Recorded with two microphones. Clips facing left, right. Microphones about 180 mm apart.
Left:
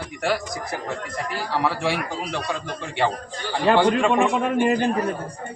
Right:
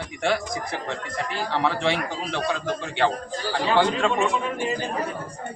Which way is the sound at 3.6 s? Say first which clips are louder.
Left 4 dB; 60° left (ahead or behind).